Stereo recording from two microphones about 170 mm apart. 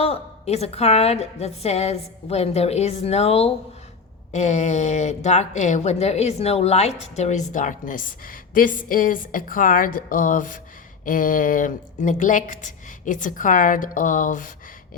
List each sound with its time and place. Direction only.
0.0 s a woman's voice: 35° left (ahead or behind)